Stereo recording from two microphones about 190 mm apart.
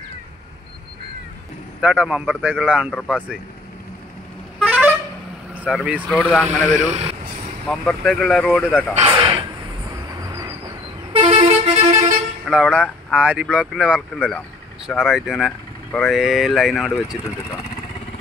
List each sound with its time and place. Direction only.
1.8 s speech: 5° right (ahead or behind)
4.6 s vehicle horn: 5° right (ahead or behind)
5.5 s speech: 5° right (ahead or behind)
6.9 s speech: 30° right (ahead or behind)
7.6 s speech: centre (ahead or behind)
8.9 s a sound: 30° right (ahead or behind)
11.1 s vehicle: 30° right (ahead or behind)
12.4 s speech: centre (ahead or behind)